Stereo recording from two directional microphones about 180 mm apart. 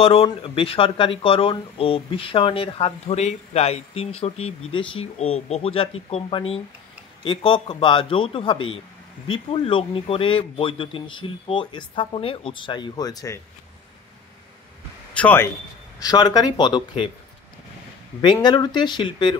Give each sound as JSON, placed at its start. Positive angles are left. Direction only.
{"t": 0.0, "sound": "speech", "side_deg": 30}
{"t": 15.1, "sound": "a man's voice", "side_deg": 10}
{"t": 16.0, "sound": "speech", "side_deg": 20}
{"t": 18.2, "sound": "speech", "side_deg": 25}